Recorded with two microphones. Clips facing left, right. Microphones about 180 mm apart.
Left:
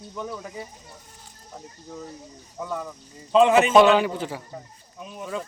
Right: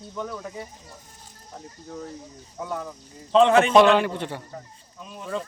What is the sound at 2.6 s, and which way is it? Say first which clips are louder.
A man's voice: even; centre (ahead or behind).